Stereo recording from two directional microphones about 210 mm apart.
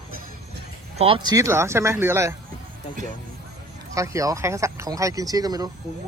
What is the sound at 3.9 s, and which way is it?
Speech, 15° right (ahead or behind).